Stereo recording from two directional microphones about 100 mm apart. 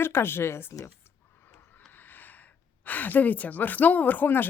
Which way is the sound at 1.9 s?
20° left (ahead or behind).